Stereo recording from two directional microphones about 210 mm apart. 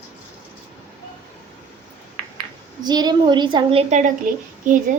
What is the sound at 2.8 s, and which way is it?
A woman's voice, 20° right (ahead or behind).